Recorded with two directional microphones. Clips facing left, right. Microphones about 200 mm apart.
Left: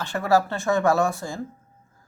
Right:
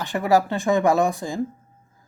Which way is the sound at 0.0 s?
15° right (ahead or behind).